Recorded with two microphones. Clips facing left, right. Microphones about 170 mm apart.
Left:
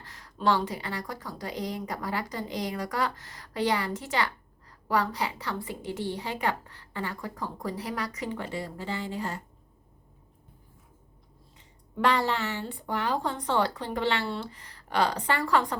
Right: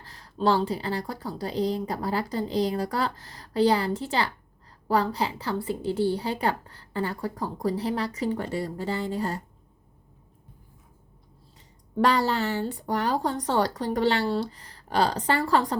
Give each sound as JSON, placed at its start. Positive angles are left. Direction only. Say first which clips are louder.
{"t": 0.0, "sound": "a woman's voice", "louder": "right 3 dB", "side_deg": -30}
{"t": 11.9, "sound": "a woman's voice", "louder": "right 3 dB", "side_deg": -35}